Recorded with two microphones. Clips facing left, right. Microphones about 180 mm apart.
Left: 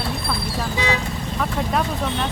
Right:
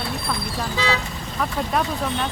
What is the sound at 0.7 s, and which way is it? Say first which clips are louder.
Speech: even; 15° left (ahead or behind).